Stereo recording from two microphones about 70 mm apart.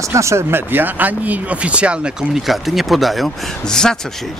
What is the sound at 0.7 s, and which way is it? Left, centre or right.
Speech, right.